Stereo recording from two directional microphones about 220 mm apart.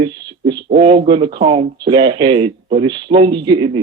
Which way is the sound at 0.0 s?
20° right (ahead or behind).